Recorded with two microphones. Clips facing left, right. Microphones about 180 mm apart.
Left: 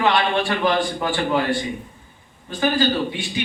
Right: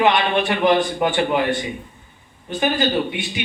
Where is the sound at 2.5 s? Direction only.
20° right (ahead or behind).